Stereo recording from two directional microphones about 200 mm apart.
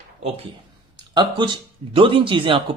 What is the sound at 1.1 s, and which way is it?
Speech, 20° right (ahead or behind).